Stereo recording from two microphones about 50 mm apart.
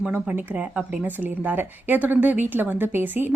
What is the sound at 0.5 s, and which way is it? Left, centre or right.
Speech, right.